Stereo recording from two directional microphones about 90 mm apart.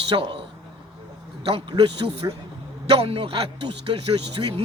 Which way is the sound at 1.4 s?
70° right (ahead or behind).